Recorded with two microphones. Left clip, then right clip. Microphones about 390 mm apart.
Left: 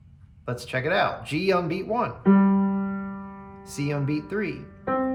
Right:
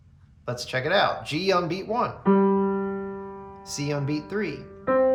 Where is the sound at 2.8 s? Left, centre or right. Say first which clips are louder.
Right 3 dB; centre.